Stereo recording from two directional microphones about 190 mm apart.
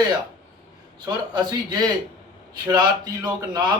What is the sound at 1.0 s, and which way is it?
A man's voice, 20° right (ahead or behind).